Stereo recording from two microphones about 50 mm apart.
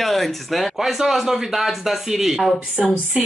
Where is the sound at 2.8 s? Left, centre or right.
Centre.